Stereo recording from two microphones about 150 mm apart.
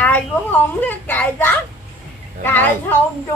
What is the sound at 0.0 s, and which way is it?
A man's voice, 10° left (ahead or behind).